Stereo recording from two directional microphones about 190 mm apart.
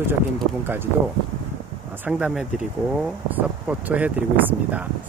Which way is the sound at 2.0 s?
5° right (ahead or behind).